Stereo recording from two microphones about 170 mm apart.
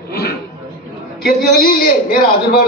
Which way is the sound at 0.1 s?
65° left (ahead or behind).